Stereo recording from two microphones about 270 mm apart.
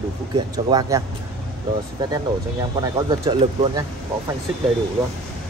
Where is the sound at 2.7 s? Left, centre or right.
Centre.